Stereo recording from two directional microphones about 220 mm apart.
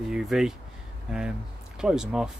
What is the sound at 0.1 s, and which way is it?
Speech, centre (ahead or behind).